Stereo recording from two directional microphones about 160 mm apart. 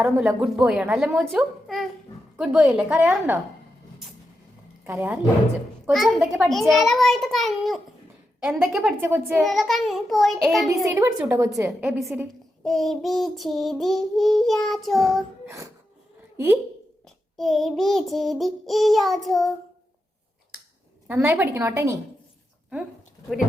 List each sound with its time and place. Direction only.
0.0 s child singing: 5° right (ahead or behind)
4.9 s a woman's voice: 10° right (ahead or behind)
5.9 s child singing: centre (ahead or behind)
9.0 s a woman's voice: 15° right (ahead or behind)
9.4 s child singing: centre (ahead or behind)
10.8 s a woman's voice: 20° right (ahead or behind)
11.8 s child singing: 5° right (ahead or behind)
15.4 s speech: 20° right (ahead or behind)
17.3 s child singing: centre (ahead or behind)
21.1 s a woman's voice: 10° right (ahead or behind)